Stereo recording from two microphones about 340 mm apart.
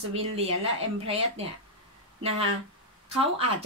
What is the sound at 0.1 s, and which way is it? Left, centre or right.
Speech, centre.